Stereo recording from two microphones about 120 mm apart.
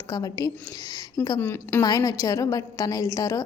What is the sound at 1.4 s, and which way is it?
Speech, 20° left (ahead or behind).